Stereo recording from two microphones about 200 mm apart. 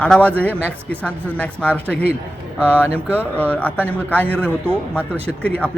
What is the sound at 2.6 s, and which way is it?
Speech, 10° right (ahead or behind).